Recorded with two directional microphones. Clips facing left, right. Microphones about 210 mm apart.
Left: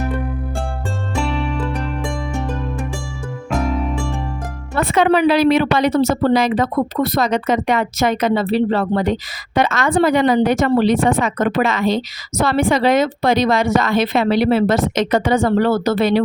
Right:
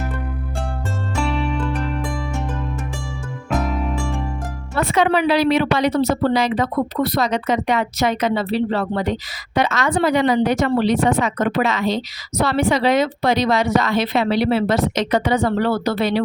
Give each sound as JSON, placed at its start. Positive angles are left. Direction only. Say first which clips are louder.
{"t": 1.1, "sound": "music", "louder": "even", "side_deg": 0}
{"t": 3.5, "sound": "music", "louder": "left 2 dB", "side_deg": 0}
{"t": 4.8, "sound": "a woman's voice", "louder": "left 3 dB", "side_deg": 50}